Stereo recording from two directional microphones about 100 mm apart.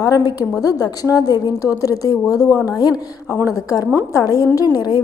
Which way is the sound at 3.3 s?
25° left (ahead or behind).